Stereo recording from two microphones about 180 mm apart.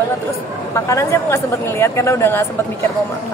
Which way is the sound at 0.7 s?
15° left (ahead or behind).